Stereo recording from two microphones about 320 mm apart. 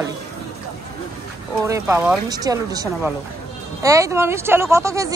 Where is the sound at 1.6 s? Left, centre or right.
Centre.